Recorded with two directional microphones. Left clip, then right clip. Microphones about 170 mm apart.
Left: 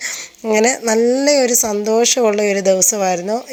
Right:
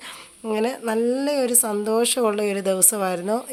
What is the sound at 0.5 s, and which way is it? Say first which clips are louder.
Speech: left 9 dB; 30° left (ahead or behind).